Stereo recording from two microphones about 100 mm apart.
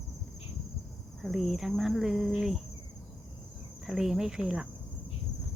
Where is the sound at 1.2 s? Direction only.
5° right (ahead or behind).